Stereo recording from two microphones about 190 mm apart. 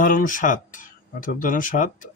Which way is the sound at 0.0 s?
45° left (ahead or behind).